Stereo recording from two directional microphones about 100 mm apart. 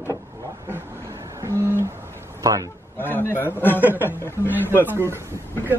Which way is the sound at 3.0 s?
20° left (ahead or behind).